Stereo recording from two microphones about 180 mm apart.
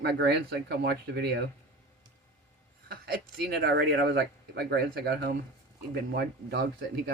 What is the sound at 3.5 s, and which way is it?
Speech, 65° right (ahead or behind).